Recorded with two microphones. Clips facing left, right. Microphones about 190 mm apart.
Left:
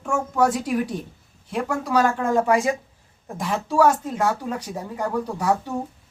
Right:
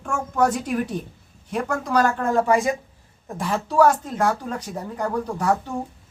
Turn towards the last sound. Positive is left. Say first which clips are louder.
# even
turn(degrees=10)  # may be behind; listen again after turning